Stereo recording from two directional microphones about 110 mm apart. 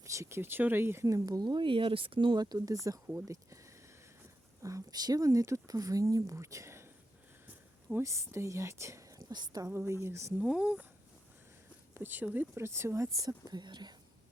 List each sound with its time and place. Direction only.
0.0 s speech: 25° right (ahead or behind)
3.1 s speech: 25° right (ahead or behind)
4.6 s speech: 35° right (ahead or behind)
7.4 s a sound: 15° right (ahead or behind)
8.0 s speech: 25° right (ahead or behind)
10.4 s speech: 10° right (ahead or behind)
11.9 s speech: 15° right (ahead or behind); by 13.9 s 40° right (ahead or behind)